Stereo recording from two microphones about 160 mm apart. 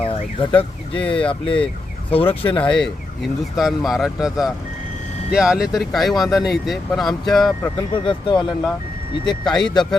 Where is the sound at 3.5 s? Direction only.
Centre (ahead or behind).